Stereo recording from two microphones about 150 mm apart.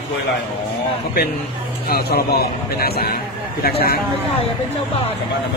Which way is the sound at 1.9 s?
90° left.